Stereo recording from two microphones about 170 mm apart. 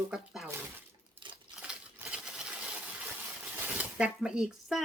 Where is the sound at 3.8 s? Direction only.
5° right (ahead or behind).